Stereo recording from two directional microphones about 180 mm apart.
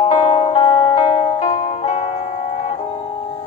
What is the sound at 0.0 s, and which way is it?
Music, 35° left (ahead or behind).